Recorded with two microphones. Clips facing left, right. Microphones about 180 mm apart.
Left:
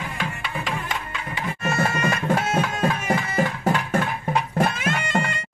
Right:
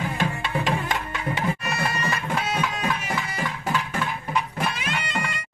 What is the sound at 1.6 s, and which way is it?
Music, 50° left (ahead or behind).